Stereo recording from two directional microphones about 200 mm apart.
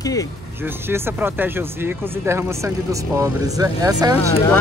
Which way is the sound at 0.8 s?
10° right (ahead or behind).